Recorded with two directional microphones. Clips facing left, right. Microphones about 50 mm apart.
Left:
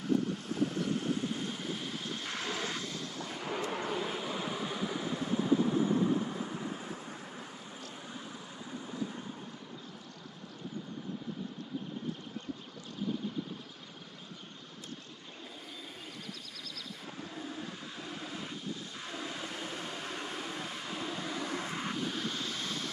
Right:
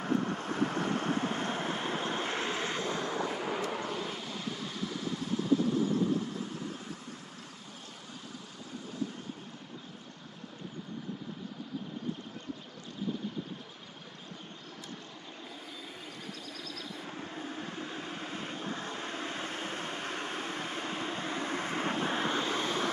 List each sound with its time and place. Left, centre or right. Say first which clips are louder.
0.0 s vehicle: even; right
3.3 s vehicle: right 3 dB; centre
3.8 s vehicle: left 2 dB; centre
17.4 s vehicle: right 2 dB; right